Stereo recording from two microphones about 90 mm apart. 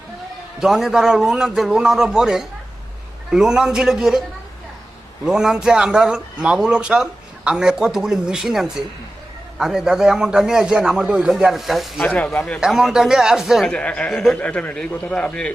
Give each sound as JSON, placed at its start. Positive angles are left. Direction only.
{"t": 0.6, "sound": "a man's voice", "side_deg": -5}
{"t": 5.2, "sound": "a man's voice", "side_deg": -5}
{"t": 12.0, "sound": "a man's voice", "side_deg": 10}
{"t": 12.5, "sound": "a man's voice", "side_deg": -5}
{"t": 13.7, "sound": "a man's voice", "side_deg": 10}